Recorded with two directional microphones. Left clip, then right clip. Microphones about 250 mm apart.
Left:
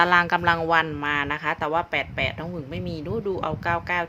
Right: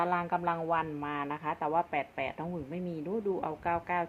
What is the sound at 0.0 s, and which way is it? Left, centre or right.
Speech, left.